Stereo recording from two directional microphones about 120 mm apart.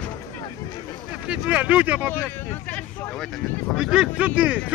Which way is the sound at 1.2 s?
10° right (ahead or behind).